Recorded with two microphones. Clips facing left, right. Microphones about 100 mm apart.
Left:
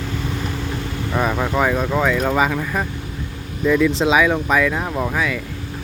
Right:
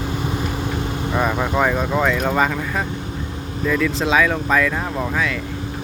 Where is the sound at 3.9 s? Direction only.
30° left (ahead or behind).